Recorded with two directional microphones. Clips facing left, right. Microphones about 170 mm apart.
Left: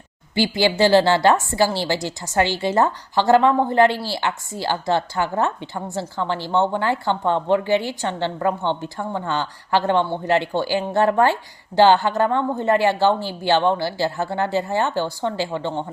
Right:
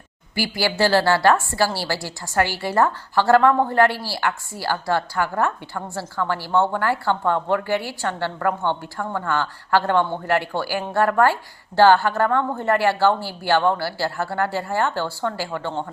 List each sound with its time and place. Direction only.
0.3 s a woman's voice: 20° left (ahead or behind)